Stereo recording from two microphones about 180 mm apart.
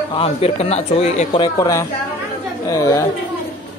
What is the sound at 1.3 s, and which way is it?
Speech, 20° left (ahead or behind).